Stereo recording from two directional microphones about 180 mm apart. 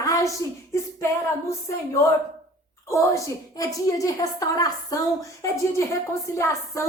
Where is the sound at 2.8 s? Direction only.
15° left (ahead or behind).